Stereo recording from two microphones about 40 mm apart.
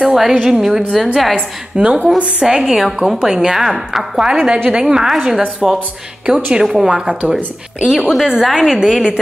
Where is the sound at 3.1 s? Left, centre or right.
Centre.